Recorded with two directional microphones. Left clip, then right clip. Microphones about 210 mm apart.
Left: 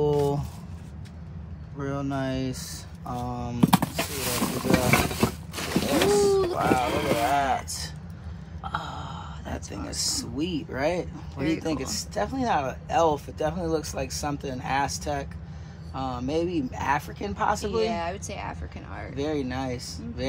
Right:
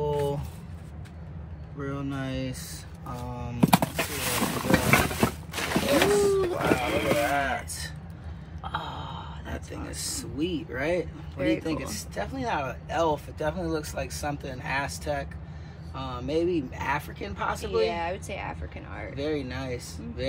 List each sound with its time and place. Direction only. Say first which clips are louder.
0.0 s a sound: left 4 dB; 30° left (ahead or behind)
1.8 s speech: left 4 dB; 25° left (ahead or behind)
3.9 s roaring cats: even; 10° left (ahead or behind)
6.4 s a sound: left 2 dB; 5° left (ahead or behind)
8.6 s a sound: left 1 dB; 5° left (ahead or behind)
9.9 s speech: left 5 dB; 30° left (ahead or behind)
11.3 s speech: right 2 dB; centre (ahead or behind)
11.6 s speech: left 2 dB; 25° left (ahead or behind)
17.7 s speech: even; 5° left (ahead or behind)
19.1 s speech: left 2 dB; 30° left (ahead or behind)